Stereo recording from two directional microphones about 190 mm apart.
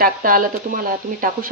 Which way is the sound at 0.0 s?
45° right (ahead or behind).